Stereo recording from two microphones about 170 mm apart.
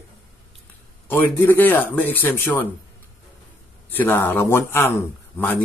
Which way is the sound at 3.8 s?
10° left (ahead or behind).